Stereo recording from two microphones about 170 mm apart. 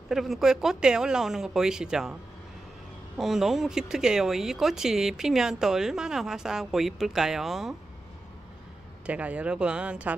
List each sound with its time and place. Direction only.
0.1 s speech: centre (ahead or behind)
3.2 s speech: centre (ahead or behind)
9.0 s speech: 10° right (ahead or behind)